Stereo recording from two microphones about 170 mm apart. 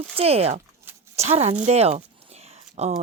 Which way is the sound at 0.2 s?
35° right (ahead or behind).